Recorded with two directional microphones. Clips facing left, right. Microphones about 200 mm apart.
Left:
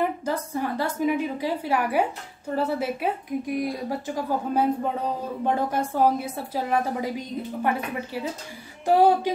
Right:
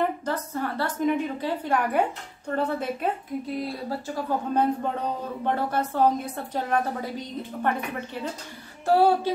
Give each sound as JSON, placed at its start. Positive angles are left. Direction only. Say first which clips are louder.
{"t": 0.0, "sound": "a woman's voice", "louder": "left 1 dB", "side_deg": 10}